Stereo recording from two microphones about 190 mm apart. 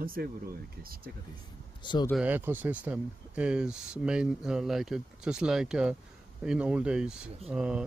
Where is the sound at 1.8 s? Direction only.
25° left (ahead or behind).